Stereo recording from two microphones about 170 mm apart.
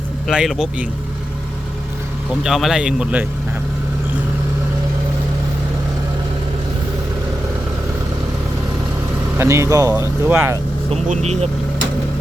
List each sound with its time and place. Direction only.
0.3 s speech: 5° right (ahead or behind)
2.4 s speech: centre (ahead or behind)
9.4 s speech: 15° right (ahead or behind)
10.8 s speech: 40° right (ahead or behind)